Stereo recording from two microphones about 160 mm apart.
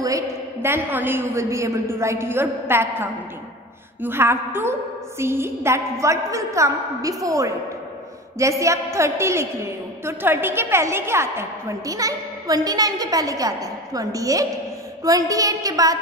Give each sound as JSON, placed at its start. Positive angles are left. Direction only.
{"t": 0.0, "sound": "a woman's voice", "side_deg": -15}
{"t": 2.7, "sound": "a sound", "side_deg": -15}
{"t": 5.2, "sound": "a woman's voice", "side_deg": -15}